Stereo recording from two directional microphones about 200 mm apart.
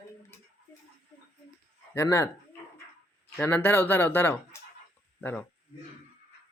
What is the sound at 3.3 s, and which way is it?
Speech, 10° left (ahead or behind).